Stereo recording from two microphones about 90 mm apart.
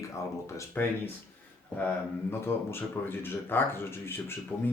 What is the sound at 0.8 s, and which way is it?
Speech, 20° left (ahead or behind).